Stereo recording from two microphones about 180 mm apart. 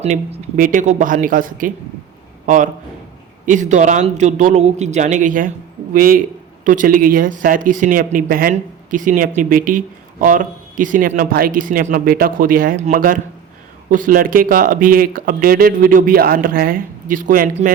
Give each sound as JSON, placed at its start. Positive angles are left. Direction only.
{"t": 0.0, "sound": "speech", "side_deg": -35}
{"t": 0.5, "sound": "speech", "side_deg": -45}
{"t": 3.4, "sound": "speech", "side_deg": -45}